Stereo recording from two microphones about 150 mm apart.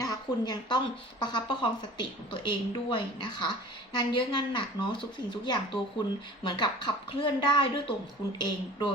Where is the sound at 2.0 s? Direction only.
30° left (ahead or behind).